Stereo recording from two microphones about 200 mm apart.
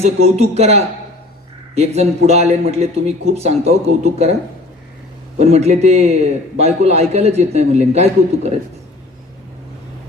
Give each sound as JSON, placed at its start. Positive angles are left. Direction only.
{"t": 0.0, "sound": "speech", "side_deg": -30}
{"t": 5.4, "sound": "speech", "side_deg": -35}